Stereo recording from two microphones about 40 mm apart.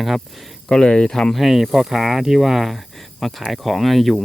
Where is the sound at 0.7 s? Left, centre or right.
Left.